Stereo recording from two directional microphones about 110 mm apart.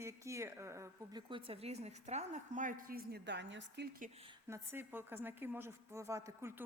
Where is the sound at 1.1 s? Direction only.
50° right (ahead or behind); by 2.4 s 90° right.